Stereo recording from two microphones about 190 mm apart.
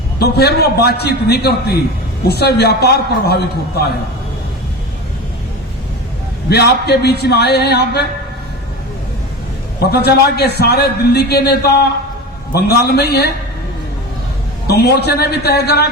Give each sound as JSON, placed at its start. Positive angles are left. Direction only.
{"t": 0.2, "sound": "a man's voice", "side_deg": 55}
{"t": 6.5, "sound": "a man's voice", "side_deg": 60}
{"t": 9.9, "sound": "a man's voice", "side_deg": 60}
{"t": 12.5, "sound": "a man's voice", "side_deg": 55}
{"t": 14.7, "sound": "a man's voice", "side_deg": 55}